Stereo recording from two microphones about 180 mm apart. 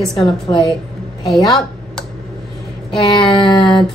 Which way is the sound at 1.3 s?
Centre (ahead or behind).